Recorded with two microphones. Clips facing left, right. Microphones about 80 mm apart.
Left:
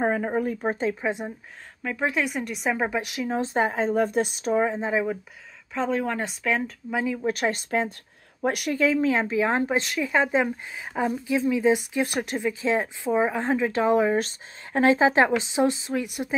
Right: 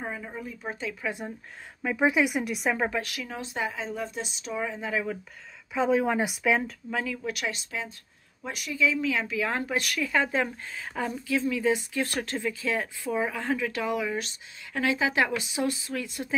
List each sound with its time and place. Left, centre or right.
0.0 s speech: left
1.0 s speech: left
1.8 s speech: centre
2.9 s speech: left
3.3 s speech: left
5.8 s speech: centre
6.9 s a woman's voice: left
8.4 s speech: left
9.1 s speech: left